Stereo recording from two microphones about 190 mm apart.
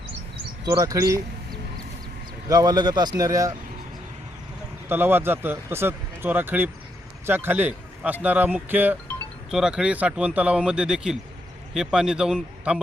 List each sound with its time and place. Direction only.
0.6 s speech: 20° right (ahead or behind)
2.5 s a man's voice: 20° right (ahead or behind)
4.9 s speech: 10° right (ahead or behind)